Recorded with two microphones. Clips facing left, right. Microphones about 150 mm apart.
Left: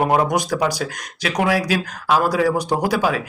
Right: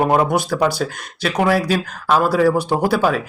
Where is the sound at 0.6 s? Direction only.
40° left (ahead or behind).